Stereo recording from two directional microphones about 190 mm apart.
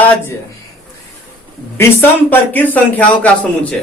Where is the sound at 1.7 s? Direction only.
10° left (ahead or behind).